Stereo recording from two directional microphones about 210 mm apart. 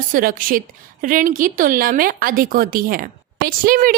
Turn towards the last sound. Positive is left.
turn(degrees=-40)  # may be behind; listen again after turning